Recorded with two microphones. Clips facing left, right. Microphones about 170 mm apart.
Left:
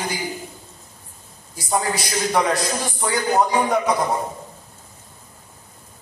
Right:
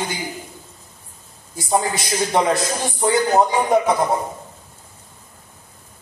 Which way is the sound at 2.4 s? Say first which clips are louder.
Right 2 dB; 25° right (ahead or behind).